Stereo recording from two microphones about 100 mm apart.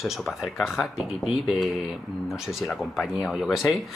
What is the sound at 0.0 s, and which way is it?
Speech, centre (ahead or behind).